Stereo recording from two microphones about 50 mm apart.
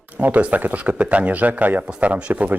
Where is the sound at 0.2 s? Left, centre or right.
Right.